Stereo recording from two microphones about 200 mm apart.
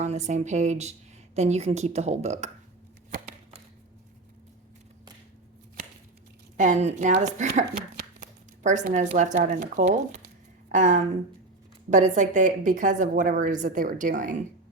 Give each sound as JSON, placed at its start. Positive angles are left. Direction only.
{"t": 0.0, "sound": "speech", "side_deg": -35}
{"t": 6.6, "sound": "speech", "side_deg": -35}